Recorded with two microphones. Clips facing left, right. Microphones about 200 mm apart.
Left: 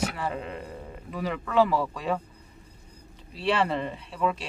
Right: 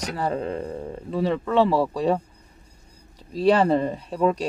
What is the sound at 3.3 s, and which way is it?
A man's voice, 35° right (ahead or behind).